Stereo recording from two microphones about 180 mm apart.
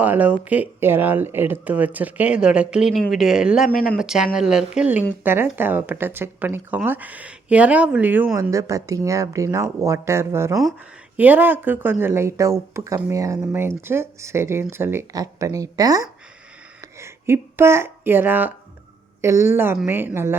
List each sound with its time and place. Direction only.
0.0 s speech: 10° right (ahead or behind)
10.5 s speech: centre (ahead or behind)